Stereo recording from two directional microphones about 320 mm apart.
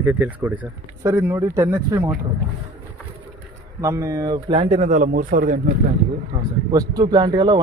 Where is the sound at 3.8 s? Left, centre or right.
Centre; by 5.6 s right.